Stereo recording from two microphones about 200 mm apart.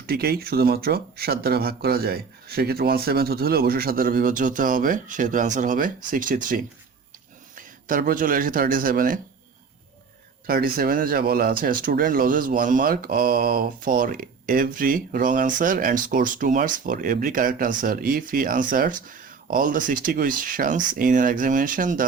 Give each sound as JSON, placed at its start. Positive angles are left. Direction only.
{"t": 0.1, "sound": "speech", "side_deg": -50}
{"t": 10.4, "sound": "speech", "side_deg": -50}